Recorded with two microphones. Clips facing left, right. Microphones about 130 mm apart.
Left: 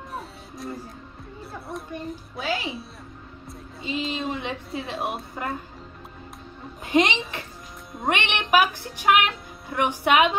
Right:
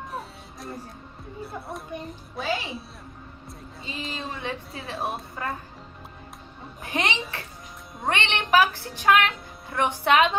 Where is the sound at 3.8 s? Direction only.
20° left (ahead or behind).